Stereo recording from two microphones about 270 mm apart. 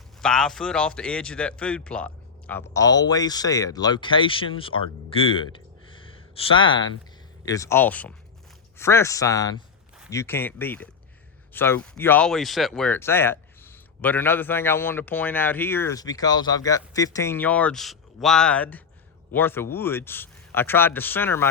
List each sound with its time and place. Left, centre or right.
0.2 s speech: centre
5.1 s a sound: centre
7.4 s speech: centre